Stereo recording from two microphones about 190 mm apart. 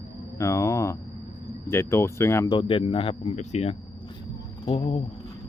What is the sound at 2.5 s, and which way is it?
Speech, 30° left (ahead or behind).